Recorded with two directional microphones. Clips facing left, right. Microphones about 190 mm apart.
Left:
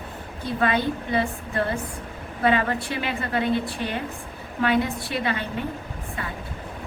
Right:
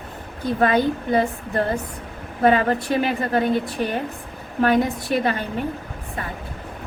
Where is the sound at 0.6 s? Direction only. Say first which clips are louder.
Right 5 dB; 40° right (ahead or behind).